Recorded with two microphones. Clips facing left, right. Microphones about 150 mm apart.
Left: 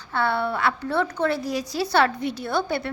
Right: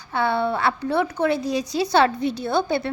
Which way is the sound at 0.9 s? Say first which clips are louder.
Right 3 dB; 15° right (ahead or behind).